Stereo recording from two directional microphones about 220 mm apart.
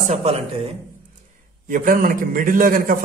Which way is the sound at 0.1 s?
30° right (ahead or behind).